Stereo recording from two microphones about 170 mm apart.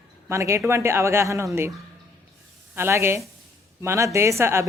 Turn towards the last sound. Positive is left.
turn(degrees=-15)  # may be behind; listen again after turning